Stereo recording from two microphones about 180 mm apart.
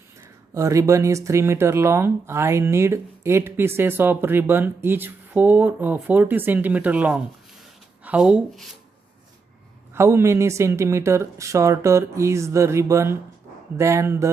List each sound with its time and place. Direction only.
0.5 s speech: 15° right (ahead or behind)
9.9 s speech: 15° right (ahead or behind)